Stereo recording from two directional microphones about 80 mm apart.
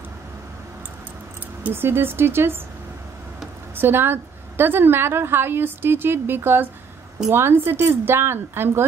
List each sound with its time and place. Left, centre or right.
1.6 s a woman's voice: right
3.7 s a woman's voice: right